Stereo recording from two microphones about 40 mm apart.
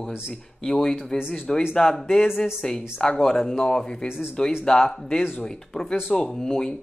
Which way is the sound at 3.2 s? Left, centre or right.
Centre.